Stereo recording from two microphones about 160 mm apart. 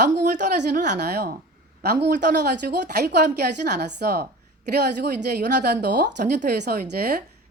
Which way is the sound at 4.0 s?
75° right (ahead or behind).